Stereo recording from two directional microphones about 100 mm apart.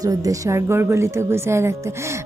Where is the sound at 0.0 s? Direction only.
35° right (ahead or behind).